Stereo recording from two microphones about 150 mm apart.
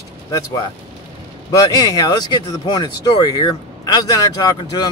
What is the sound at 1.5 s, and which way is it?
Speech, 25° left (ahead or behind).